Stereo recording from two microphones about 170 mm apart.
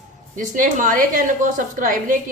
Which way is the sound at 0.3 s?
50° right (ahead or behind).